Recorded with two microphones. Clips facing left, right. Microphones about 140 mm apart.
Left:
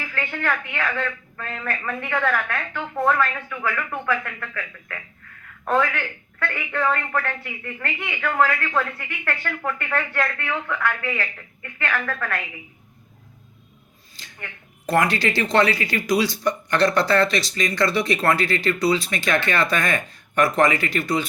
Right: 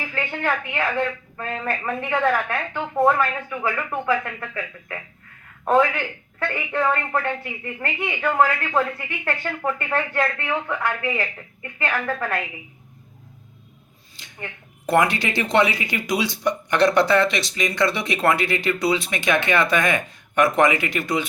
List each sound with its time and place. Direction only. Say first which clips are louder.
0.0 s a sound: right 2 dB; 20° right (ahead or behind)
0.7 s speech: right 3 dB; 25° right (ahead or behind)
14.3 s a woman's voice: right 4 dB; 25° right (ahead or behind)